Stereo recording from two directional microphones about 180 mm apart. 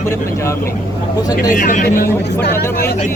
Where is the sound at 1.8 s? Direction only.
55° left (ahead or behind).